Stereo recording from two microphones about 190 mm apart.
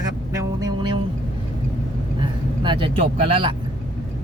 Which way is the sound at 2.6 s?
25° right (ahead or behind).